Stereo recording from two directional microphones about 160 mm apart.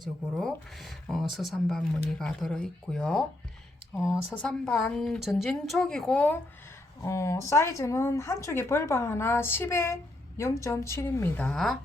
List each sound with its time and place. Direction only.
0.0 s speech: centre (ahead or behind)
7.0 s speech: 20° left (ahead or behind); by 11.8 s centre (ahead or behind)